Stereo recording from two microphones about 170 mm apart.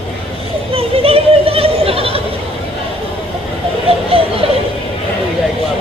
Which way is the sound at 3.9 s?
35° right (ahead or behind).